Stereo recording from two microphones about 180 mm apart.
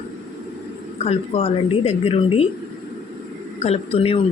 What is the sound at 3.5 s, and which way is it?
Speech, 35° left (ahead or behind).